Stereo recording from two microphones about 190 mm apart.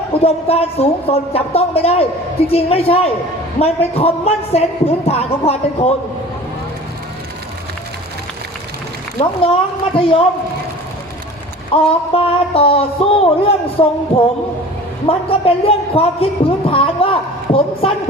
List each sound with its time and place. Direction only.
0.2 s speech: 30° left (ahead or behind)
9.1 s speech: 30° left (ahead or behind)
11.7 s speech: 30° left (ahead or behind)
15.0 s speech: 30° left (ahead or behind)